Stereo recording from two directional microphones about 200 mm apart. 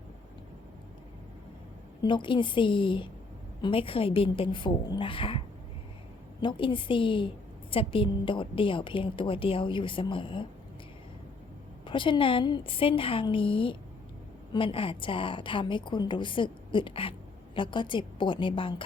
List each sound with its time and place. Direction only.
2.0 s a woman's voice: 25° left (ahead or behind)
6.4 s a woman's voice: 25° left (ahead or behind)
11.9 s a woman's voice: 25° left (ahead or behind)